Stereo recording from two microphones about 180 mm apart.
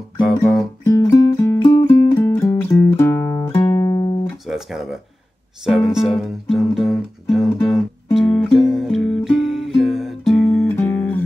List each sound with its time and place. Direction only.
0.8 s music: 20° left (ahead or behind)
4.5 s music: centre (ahead or behind)